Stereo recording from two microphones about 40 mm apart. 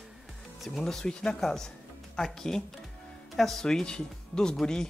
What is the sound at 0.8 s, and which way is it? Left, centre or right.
Speech, centre.